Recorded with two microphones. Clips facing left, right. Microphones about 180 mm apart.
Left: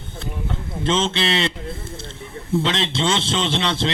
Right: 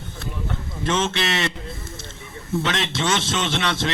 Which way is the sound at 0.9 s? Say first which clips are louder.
Left 2 dB; 25° left (ahead or behind).